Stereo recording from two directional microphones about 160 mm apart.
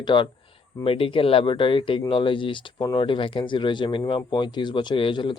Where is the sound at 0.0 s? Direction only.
30° left (ahead or behind).